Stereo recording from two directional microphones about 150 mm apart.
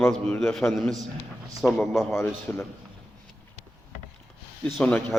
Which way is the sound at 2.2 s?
15° left (ahead or behind).